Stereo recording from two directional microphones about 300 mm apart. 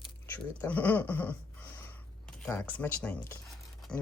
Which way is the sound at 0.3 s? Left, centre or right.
Centre.